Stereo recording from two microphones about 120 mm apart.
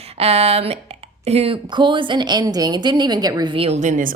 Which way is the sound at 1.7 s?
40° right (ahead or behind).